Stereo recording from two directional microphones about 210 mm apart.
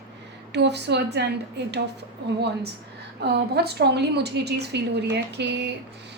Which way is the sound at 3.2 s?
50° right (ahead or behind).